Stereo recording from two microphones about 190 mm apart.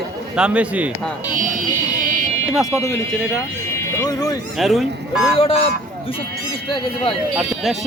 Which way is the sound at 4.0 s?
20° left (ahead or behind).